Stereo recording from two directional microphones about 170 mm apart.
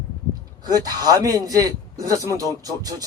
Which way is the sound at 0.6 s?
20° right (ahead or behind).